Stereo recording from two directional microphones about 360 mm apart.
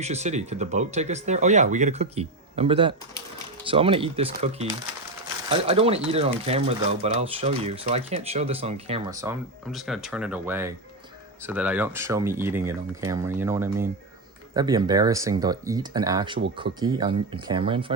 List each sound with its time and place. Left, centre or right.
0.0 s speech: centre